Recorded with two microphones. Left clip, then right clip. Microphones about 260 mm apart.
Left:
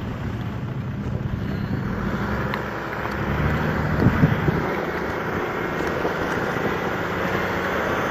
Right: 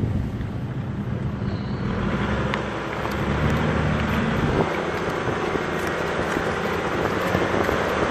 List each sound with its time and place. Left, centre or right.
3.3 s vehicle: right